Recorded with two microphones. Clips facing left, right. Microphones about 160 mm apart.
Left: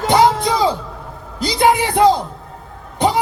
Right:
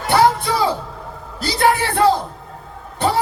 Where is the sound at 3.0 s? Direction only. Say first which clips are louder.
Left 2 dB; 15° left (ahead or behind).